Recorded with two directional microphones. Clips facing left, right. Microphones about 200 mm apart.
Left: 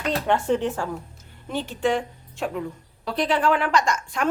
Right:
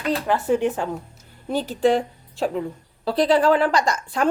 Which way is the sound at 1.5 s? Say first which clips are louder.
Right 5 dB; 40° right (ahead or behind).